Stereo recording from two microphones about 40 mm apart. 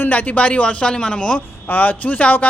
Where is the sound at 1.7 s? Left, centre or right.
Left.